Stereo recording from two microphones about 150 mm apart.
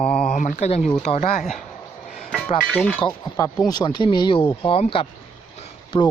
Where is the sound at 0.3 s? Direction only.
55° left (ahead or behind).